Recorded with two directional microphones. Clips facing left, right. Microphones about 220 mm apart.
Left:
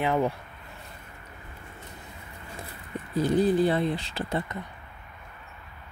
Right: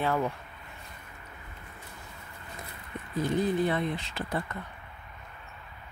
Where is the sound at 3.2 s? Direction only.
35° left (ahead or behind).